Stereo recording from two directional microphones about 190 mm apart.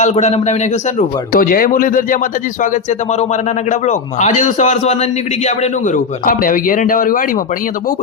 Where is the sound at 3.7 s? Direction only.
40° left (ahead or behind).